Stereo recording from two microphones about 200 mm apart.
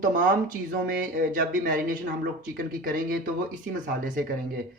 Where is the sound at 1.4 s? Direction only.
45° right (ahead or behind).